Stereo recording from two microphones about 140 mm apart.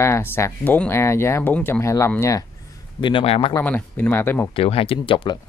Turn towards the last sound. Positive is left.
turn(degrees=40)  # may be behind; listen again after turning